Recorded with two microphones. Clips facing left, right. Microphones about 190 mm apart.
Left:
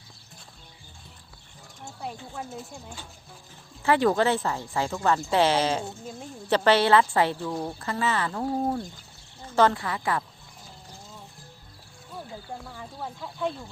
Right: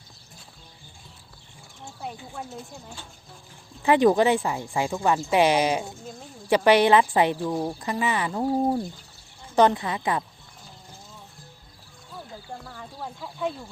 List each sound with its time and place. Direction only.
1.8 s speech: centre (ahead or behind)
3.8 s speech: 15° right (ahead or behind)
7.8 s speech: 15° right (ahead or behind)
9.6 s a woman's voice: 20° right (ahead or behind)
12.1 s speech: centre (ahead or behind)